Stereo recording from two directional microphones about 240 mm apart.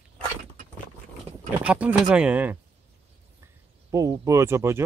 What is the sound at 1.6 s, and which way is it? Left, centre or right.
Speech, centre.